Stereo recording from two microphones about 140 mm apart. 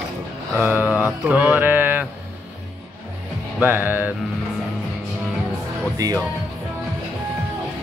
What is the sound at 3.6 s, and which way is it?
Mantra, 15° right (ahead or behind).